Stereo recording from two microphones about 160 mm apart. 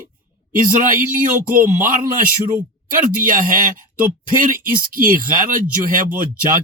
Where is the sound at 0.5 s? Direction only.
60° right (ahead or behind).